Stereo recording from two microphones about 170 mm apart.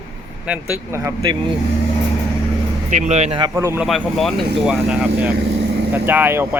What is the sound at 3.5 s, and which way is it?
Speech, 15° right (ahead or behind).